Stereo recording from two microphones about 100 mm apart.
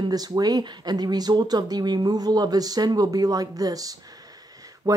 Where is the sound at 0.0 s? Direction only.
40° right (ahead or behind).